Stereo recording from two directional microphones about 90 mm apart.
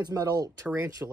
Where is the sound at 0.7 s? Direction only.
30° right (ahead or behind).